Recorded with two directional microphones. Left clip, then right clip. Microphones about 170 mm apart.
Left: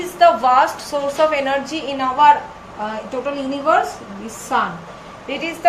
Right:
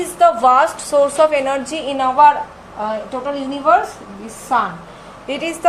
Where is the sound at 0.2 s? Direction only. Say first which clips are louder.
Right 1 dB; 55° right (ahead or behind).